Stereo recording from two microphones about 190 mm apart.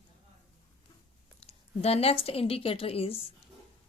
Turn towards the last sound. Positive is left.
turn(degrees=30)  # may be behind; listen again after turning